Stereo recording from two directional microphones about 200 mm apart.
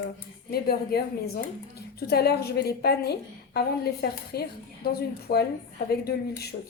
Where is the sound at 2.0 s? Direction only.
55° left (ahead or behind).